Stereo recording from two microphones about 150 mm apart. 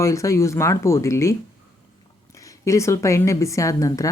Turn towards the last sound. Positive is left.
turn(degrees=25)  # may be behind; listen again after turning